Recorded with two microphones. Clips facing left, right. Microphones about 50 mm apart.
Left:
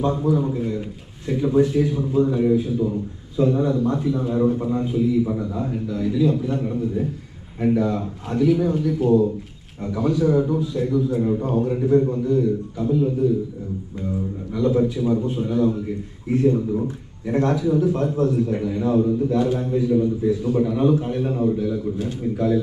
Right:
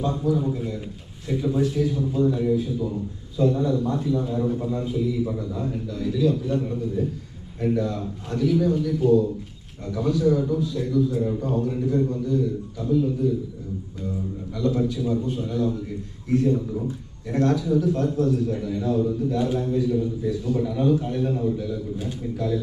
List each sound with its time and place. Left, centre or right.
0.0 s a man's voice: left
14.5 s a man's voice: centre
19.9 s a man's voice: left